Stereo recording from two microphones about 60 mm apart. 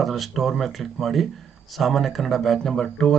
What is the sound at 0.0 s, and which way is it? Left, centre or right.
Speech, centre.